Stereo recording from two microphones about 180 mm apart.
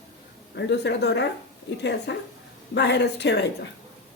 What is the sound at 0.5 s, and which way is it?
A woman's voice, 75° left (ahead or behind).